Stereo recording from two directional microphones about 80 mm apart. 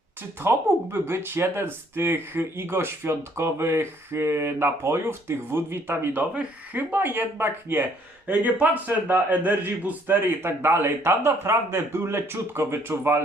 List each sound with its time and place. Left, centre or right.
0.2 s a man's voice: right